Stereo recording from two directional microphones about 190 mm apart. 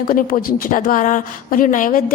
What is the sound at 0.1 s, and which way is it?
Speech, 50° left (ahead or behind).